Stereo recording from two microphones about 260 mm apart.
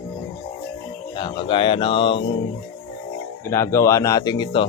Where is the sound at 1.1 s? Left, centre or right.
Centre.